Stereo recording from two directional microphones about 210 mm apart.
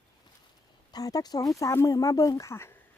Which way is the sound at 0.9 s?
20° left (ahead or behind).